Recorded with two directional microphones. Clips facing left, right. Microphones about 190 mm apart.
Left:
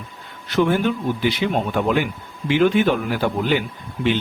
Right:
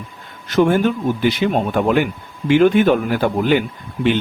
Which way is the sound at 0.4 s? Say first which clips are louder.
Right 4 dB; 45° right (ahead or behind).